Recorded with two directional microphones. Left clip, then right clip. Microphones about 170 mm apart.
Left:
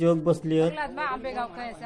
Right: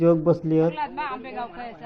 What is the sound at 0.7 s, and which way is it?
Speech, 90° left.